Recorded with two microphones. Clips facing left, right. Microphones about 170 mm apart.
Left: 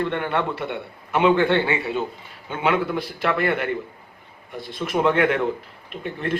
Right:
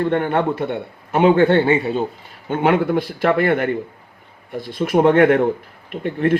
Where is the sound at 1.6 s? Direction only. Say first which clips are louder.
Right 6 dB; 35° right (ahead or behind).